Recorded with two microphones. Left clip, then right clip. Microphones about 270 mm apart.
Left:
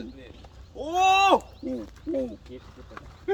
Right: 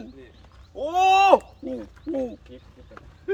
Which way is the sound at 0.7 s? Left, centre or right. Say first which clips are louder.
Right 3 dB; centre.